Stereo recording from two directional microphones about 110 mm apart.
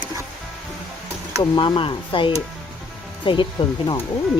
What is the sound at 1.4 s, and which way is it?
Speech, 50° left (ahead or behind).